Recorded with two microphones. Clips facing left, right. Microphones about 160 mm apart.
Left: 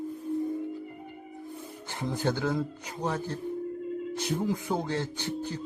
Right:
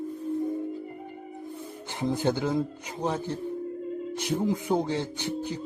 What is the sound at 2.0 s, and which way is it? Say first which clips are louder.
Speech: right 3 dB; 15° right (ahead or behind).